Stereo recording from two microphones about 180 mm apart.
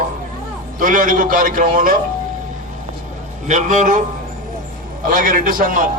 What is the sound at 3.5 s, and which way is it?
Speech, 45° right (ahead or behind).